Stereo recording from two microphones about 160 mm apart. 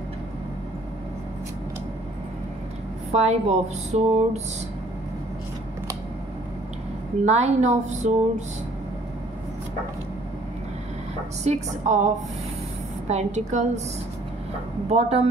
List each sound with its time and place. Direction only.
3.1 s speech: 45° right (ahead or behind)
7.2 s speech: 45° right (ahead or behind)
11.4 s speech: 50° right (ahead or behind)
13.1 s speech: 45° right (ahead or behind)
14.9 s speech: 40° right (ahead or behind)